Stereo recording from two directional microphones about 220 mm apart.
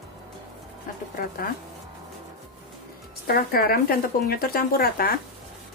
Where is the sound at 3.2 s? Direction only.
40° left (ahead or behind).